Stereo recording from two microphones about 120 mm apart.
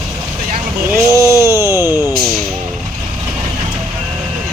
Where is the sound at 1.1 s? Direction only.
25° right (ahead or behind).